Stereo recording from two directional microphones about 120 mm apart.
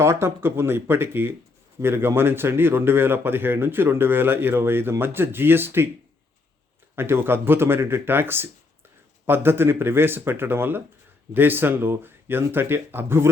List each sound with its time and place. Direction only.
0.0 s speech: 20° right (ahead or behind)
6.9 s speech: 20° right (ahead or behind)